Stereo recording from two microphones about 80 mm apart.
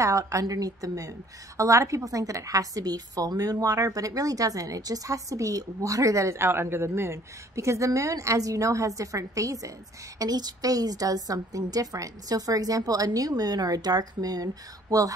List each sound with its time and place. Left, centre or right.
0.0 s a woman's voice: right
10.1 s a woman's voice: right